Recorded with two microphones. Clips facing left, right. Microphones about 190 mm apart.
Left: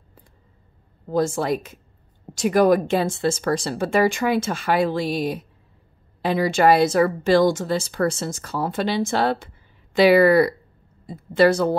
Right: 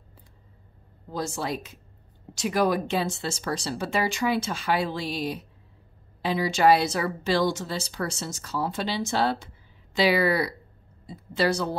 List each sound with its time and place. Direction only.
1.0 s speech: 50° left (ahead or behind)